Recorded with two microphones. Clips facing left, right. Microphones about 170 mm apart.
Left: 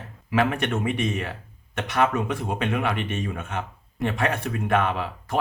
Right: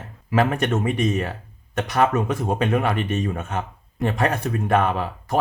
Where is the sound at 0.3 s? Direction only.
40° right (ahead or behind).